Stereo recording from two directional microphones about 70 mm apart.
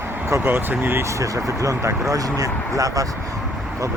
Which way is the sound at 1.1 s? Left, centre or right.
Right.